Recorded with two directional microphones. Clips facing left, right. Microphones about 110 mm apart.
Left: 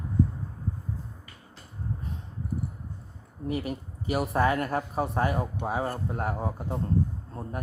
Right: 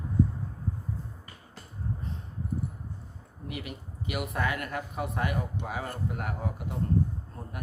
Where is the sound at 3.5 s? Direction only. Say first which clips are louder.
Left 8 dB; 35° left (ahead or behind).